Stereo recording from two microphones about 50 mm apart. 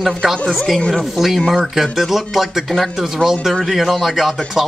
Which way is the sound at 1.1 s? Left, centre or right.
Centre.